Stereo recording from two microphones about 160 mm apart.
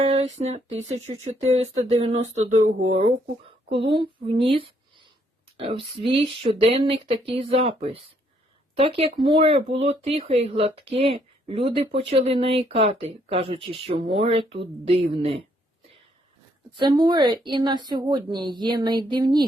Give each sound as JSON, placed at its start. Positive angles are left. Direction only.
{"t": 0.0, "sound": "speech", "side_deg": -40}
{"t": 3.7, "sound": "speech", "side_deg": -35}
{"t": 16.7, "sound": "speech", "side_deg": -30}